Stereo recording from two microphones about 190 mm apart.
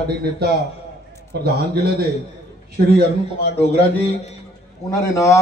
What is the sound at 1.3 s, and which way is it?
Speech, 55° right (ahead or behind).